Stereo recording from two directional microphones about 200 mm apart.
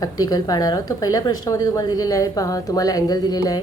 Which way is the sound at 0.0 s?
20° left (ahead or behind).